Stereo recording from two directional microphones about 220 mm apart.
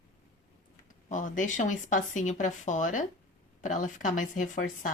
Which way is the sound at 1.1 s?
35° left (ahead or behind).